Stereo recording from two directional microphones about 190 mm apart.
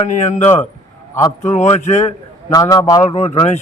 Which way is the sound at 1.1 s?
15° left (ahead or behind).